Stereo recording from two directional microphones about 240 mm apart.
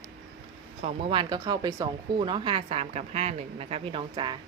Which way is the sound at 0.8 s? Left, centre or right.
Right.